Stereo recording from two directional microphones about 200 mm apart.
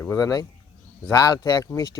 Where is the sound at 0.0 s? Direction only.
15° left (ahead or behind).